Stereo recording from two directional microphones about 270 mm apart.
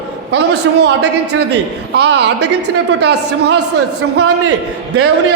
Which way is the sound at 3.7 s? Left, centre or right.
Right.